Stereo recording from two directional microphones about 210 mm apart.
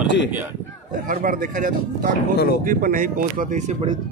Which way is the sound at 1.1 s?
40° right (ahead or behind).